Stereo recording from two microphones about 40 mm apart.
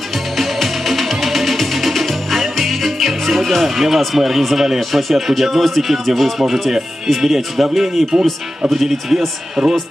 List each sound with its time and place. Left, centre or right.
0.4 s music: centre
4.7 s speech: centre
8.6 s speech: centre